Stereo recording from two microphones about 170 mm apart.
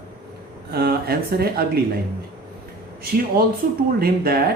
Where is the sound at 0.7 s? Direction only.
65° right (ahead or behind).